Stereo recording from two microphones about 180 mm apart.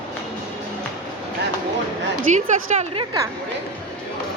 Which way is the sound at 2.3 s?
35° right (ahead or behind).